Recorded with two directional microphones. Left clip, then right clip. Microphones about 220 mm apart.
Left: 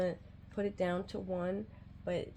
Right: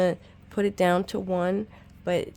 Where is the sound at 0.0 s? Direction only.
45° right (ahead or behind).